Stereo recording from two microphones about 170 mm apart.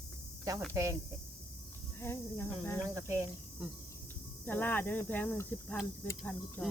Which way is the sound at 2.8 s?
15° right (ahead or behind).